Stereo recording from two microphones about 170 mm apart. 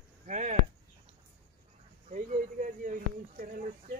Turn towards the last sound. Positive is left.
turn(degrees=-50)  # may be behind; listen again after turning